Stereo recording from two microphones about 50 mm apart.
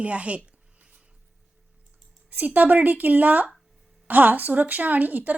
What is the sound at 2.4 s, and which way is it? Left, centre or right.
Speech, right.